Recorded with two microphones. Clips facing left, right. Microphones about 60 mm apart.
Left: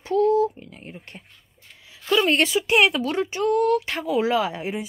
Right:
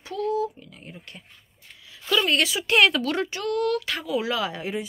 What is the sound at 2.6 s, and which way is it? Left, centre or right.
Speech, centre.